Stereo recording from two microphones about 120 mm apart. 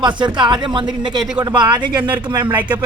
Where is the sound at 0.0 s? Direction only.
40° right (ahead or behind).